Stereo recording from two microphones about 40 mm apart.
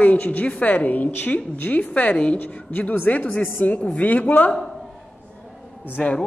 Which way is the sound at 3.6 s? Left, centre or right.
Left.